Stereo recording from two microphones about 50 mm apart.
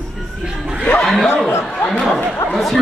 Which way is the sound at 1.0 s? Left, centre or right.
Centre.